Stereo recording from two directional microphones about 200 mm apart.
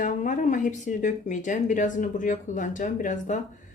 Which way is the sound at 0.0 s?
40° left (ahead or behind).